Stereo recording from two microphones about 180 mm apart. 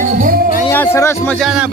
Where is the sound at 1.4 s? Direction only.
5° right (ahead or behind).